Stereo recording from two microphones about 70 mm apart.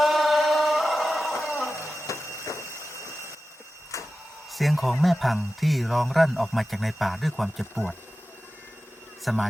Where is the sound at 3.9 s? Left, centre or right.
Left.